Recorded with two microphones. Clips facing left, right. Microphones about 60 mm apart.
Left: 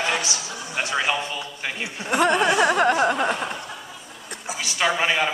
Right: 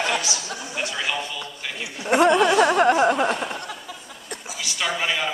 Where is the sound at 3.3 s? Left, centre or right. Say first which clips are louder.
Even; centre.